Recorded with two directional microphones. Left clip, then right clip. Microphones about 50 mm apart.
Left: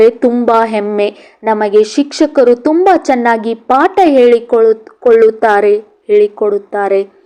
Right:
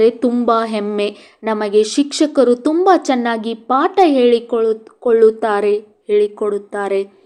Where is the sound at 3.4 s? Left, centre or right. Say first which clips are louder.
Left 6 dB; left.